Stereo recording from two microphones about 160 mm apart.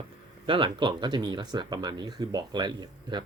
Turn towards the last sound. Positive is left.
turn(degrees=-30)  # may be behind; listen again after turning